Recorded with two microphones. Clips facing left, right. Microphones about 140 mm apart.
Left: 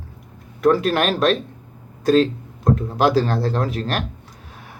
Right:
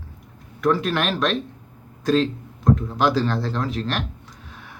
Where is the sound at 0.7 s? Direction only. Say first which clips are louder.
Left 4 dB; 40° left (ahead or behind).